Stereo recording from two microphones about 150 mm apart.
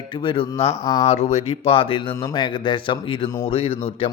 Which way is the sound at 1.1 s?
45° left (ahead or behind).